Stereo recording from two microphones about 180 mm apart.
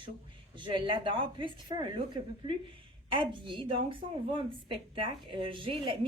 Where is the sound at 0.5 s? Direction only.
25° right (ahead or behind).